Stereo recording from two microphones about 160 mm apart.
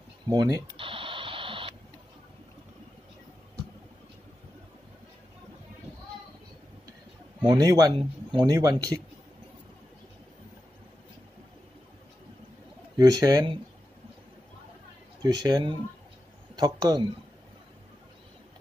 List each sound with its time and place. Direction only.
0.3 s speech: 20° right (ahead or behind)
0.7 s radio: 35° right (ahead or behind)
7.4 s speech: 25° right (ahead or behind)
12.9 s speech: 25° right (ahead or behind)
15.2 s speech: 25° right (ahead or behind)